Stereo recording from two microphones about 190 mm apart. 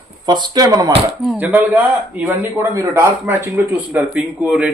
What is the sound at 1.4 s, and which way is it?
Speech, 10° right (ahead or behind).